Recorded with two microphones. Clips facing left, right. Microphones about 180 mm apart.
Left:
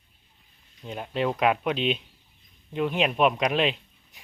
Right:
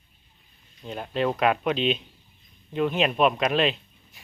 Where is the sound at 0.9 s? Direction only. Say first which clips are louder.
Right 1 dB; 5° left (ahead or behind).